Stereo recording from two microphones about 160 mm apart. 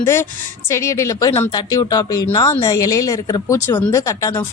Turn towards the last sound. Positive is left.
turn(degrees=20)  # may be behind; listen again after turning